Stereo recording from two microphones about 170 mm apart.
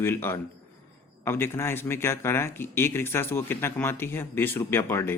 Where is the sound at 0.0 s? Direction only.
15° left (ahead or behind).